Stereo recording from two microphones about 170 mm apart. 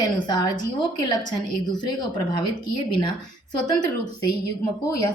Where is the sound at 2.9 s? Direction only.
25° left (ahead or behind).